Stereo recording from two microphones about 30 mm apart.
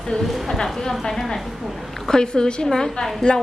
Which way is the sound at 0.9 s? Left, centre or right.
Centre.